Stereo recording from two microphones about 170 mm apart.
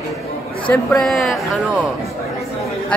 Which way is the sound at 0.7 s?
Centre (ahead or behind).